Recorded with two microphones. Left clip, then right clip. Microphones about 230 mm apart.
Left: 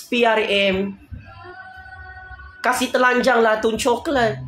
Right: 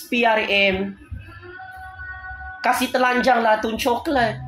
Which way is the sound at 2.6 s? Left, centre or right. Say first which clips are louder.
Left 1 dB; centre.